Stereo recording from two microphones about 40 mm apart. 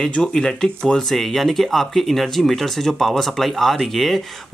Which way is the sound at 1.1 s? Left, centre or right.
Centre.